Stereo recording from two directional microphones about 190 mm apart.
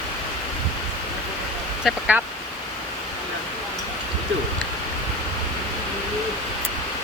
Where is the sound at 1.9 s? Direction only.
5° right (ahead or behind).